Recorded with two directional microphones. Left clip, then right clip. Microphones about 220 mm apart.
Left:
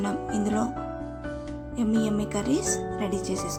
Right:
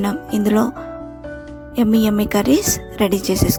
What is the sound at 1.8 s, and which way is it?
A woman's voice, 40° right (ahead or behind).